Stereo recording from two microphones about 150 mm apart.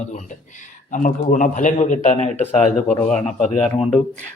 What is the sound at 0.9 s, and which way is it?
A man's voice, 60° left (ahead or behind).